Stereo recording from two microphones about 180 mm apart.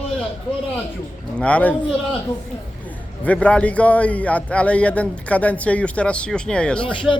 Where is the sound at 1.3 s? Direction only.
5° left (ahead or behind).